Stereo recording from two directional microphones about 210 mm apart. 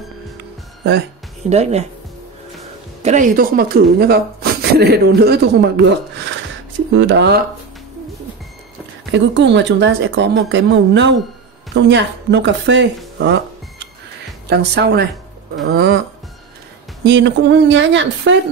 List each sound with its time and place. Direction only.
1.5 s speech: 30° right (ahead or behind)
3.0 s speech: 35° right (ahead or behind); by 7.4 s 55° right (ahead or behind)
9.1 s speech: 60° right (ahead or behind)
14.5 s speech: 50° right (ahead or behind)
17.0 s speech: 55° right (ahead or behind)